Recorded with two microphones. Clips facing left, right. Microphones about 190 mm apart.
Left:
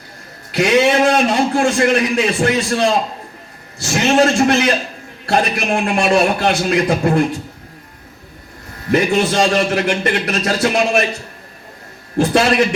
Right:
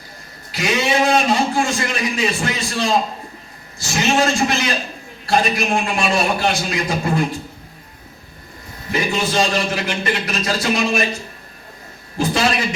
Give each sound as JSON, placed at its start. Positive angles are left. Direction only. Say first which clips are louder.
{"t": 0.5, "sound": "a man's voice", "louder": "left 6 dB", "side_deg": 60}
{"t": 8.9, "sound": "a man's voice", "louder": "left 6 dB", "side_deg": 60}
{"t": 12.1, "sound": "a man's voice", "louder": "left 5 dB", "side_deg": 65}